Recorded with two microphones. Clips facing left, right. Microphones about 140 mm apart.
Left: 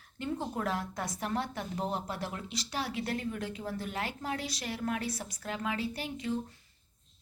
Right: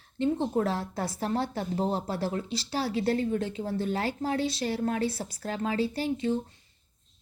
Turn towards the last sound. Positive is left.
turn(degrees=-30)  # may be behind; listen again after turning